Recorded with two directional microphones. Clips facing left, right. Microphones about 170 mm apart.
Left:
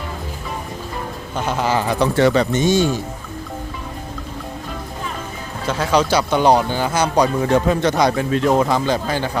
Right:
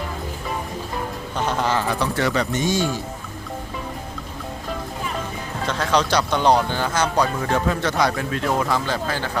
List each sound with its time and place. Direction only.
1.5 s speech: 5° left (ahead or behind); by 2.8 s 25° left (ahead or behind)
5.6 s speech: 5° left (ahead or behind)